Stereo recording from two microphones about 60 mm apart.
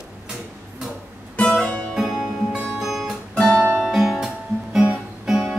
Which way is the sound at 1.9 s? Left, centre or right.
Centre.